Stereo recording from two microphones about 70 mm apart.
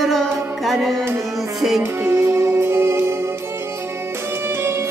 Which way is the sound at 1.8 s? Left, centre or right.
Right.